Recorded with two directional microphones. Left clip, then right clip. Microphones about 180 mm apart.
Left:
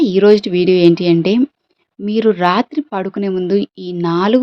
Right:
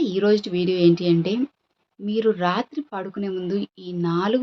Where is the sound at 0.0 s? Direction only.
45° left (ahead or behind).